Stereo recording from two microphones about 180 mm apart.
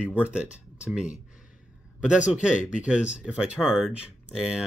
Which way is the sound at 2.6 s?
45° left (ahead or behind).